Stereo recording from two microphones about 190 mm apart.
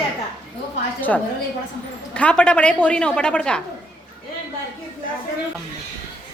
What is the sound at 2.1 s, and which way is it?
A woman's voice, 5° left (ahead or behind).